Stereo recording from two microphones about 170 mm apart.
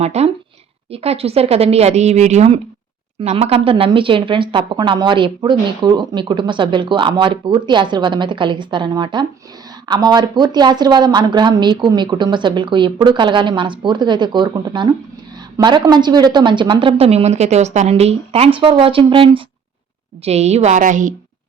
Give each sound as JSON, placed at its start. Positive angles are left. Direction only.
{"t": 0.0, "sound": "a woman's voice", "side_deg": -40}